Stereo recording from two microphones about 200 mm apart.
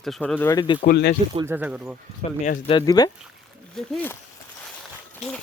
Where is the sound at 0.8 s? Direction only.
55° left (ahead or behind).